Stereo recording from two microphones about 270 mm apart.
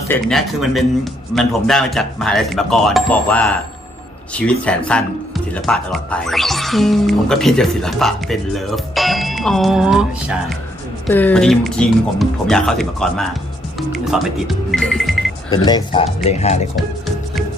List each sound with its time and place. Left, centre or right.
0.1 s speech: centre
13.9 s music: centre
15.4 s speech: centre